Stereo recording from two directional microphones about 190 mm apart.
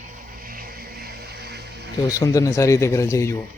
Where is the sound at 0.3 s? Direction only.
50° right (ahead or behind).